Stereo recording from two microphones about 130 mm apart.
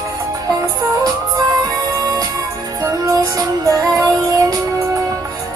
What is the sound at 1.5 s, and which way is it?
Music, 30° right (ahead or behind).